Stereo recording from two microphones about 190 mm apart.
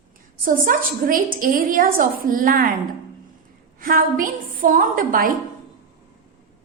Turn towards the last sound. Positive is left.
turn(degrees=-45)  # may be behind; listen again after turning